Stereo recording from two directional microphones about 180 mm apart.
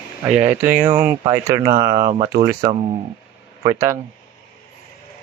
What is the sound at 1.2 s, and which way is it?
Speech, 20° right (ahead or behind).